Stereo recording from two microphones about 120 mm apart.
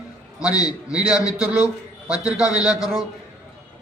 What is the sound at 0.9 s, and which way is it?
A man's voice, 5° right (ahead or behind).